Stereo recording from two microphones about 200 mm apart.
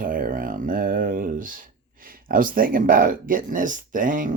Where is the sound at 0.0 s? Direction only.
45° right (ahead or behind).